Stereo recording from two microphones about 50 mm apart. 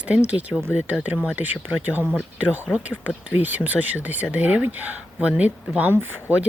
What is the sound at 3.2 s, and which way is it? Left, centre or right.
Speech, right.